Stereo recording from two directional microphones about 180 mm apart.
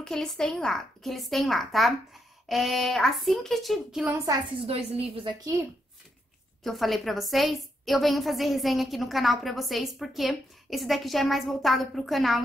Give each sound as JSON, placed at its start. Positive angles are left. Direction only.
{"t": 0.0, "sound": "a woman's voice", "side_deg": 5}
{"t": 4.3, "sound": "a woman's voice", "side_deg": -30}
{"t": 6.6, "sound": "a woman's voice", "side_deg": 0}